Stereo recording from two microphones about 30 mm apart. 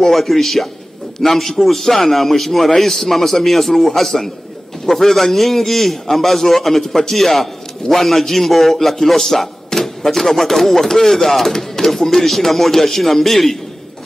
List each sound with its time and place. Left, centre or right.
0.0 s a man's voice: centre
7.1 s a man's voice: centre